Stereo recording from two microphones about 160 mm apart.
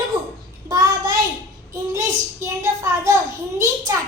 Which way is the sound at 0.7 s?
25° right (ahead or behind).